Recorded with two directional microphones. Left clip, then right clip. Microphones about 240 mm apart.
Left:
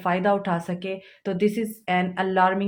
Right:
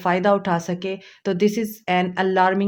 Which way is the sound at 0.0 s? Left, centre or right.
Right.